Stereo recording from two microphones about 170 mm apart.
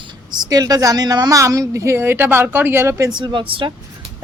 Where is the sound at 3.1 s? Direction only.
25° right (ahead or behind).